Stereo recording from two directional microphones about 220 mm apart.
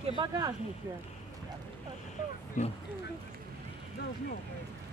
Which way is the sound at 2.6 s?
35° left (ahead or behind).